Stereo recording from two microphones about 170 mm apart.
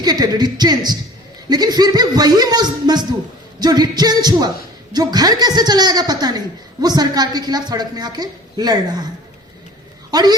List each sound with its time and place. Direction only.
0.0 s a woman's voice: 25° right (ahead or behind)
10.1 s speech: 25° right (ahead or behind)